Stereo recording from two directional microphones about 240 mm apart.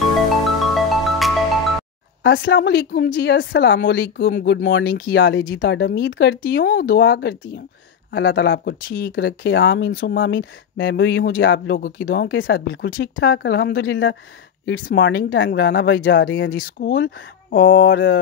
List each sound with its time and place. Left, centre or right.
0.3 s music: centre
2.2 s speech: left